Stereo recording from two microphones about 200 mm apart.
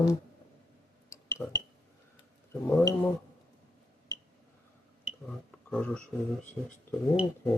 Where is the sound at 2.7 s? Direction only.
10° left (ahead or behind).